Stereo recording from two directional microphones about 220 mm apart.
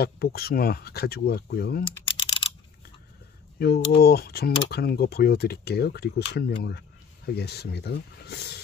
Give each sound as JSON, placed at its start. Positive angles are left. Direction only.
{"t": 0.0, "sound": "speech", "side_deg": 45}
{"t": 2.0, "sound": "computer keyboard", "side_deg": 20}
{"t": 3.5, "sound": "speech", "side_deg": 45}